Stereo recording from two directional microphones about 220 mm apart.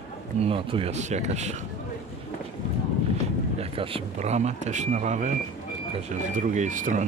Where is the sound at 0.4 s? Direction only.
25° right (ahead or behind).